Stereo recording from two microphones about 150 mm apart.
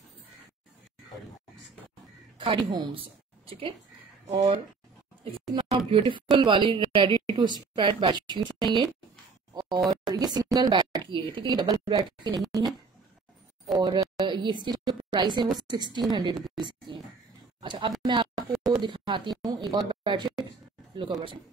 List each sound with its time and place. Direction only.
2.3 s speech: 35° right (ahead or behind)
5.9 s speech: 35° right (ahead or behind)
9.5 s music: 30° right (ahead or behind)
9.8 s a woman's voice: 25° right (ahead or behind)
13.7 s a woman's voice: 25° right (ahead or behind)
16.3 s speech: centre (ahead or behind)
16.6 s a woman's voice: 30° right (ahead or behind)